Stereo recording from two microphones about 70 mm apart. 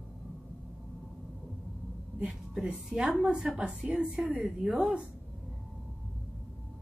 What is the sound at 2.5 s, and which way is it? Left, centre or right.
A woman's voice, centre.